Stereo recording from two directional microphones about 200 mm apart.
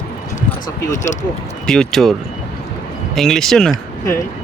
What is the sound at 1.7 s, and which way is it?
Speech, centre (ahead or behind).